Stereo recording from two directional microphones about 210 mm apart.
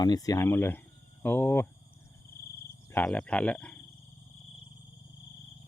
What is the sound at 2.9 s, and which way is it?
Speech, 10° left (ahead or behind).